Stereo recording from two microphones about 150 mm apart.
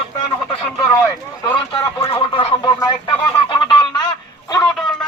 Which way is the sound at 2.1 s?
40° left (ahead or behind).